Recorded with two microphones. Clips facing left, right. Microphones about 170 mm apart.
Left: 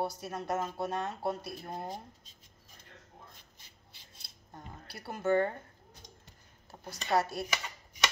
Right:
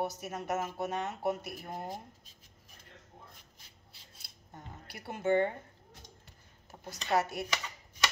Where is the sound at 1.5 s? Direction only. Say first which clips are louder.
Left 1 dB; 25° left (ahead or behind).